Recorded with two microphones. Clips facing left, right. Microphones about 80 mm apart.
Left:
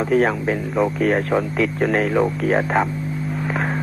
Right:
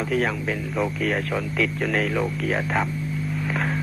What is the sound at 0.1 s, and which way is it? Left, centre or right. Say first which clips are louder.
Speech: left 7 dB; left.